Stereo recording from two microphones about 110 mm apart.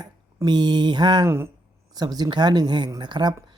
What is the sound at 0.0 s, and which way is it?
Speech, 40° right (ahead or behind).